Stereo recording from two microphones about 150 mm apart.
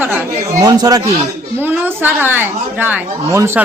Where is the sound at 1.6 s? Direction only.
15° right (ahead or behind).